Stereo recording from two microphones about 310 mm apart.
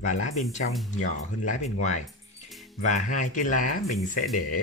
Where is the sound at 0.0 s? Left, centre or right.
Left.